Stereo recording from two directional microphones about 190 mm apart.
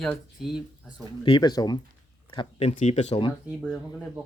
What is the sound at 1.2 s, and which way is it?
Speech, 25° left (ahead or behind).